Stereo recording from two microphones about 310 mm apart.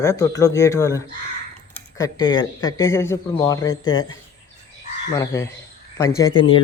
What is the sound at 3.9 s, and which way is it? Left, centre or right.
Speech, left.